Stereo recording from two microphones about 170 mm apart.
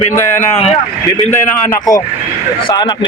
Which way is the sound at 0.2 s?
15° left (ahead or behind).